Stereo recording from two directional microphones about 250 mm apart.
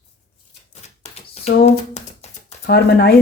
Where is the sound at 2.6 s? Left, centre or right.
Left.